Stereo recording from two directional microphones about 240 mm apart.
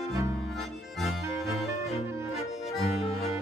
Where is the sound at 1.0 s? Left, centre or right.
Centre.